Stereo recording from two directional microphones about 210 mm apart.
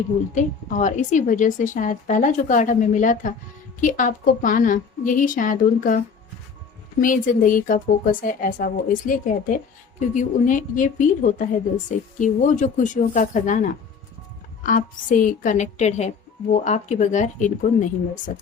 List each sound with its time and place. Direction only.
0.3 s a woman's voice: 35° left (ahead or behind)
7.0 s a woman's voice: 40° left (ahead or behind)